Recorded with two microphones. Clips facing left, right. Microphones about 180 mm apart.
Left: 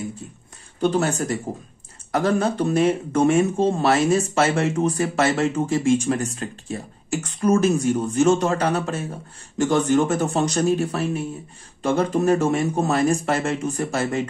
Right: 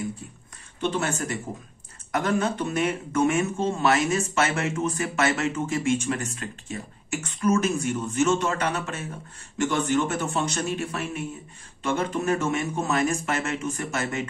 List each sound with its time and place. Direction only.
0.7 s speech: 40° left (ahead or behind)